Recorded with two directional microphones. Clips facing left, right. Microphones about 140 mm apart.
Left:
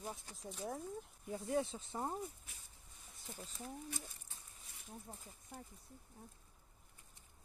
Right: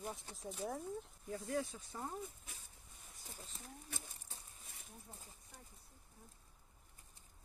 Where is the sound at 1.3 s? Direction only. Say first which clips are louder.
Left 3 dB; 25° left (ahead or behind).